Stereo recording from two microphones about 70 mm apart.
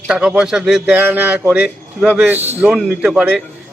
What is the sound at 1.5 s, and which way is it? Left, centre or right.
Speech, centre.